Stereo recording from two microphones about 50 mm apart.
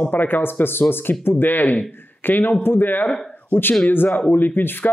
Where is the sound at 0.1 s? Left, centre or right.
Left.